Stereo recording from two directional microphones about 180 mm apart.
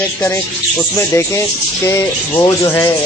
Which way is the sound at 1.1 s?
15° left (ahead or behind).